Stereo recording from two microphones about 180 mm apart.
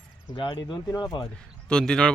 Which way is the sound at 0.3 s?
25° left (ahead or behind).